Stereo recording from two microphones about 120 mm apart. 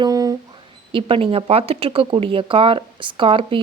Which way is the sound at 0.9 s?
50° right (ahead or behind).